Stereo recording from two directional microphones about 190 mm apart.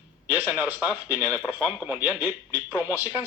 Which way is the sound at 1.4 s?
10° right (ahead or behind).